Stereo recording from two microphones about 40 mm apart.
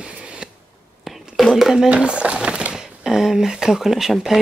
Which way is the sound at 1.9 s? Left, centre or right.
Right.